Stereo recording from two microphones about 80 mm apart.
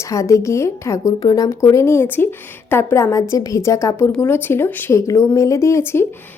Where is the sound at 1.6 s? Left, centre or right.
Left.